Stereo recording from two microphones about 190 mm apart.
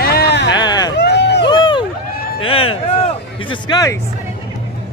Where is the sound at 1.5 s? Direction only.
25° left (ahead or behind).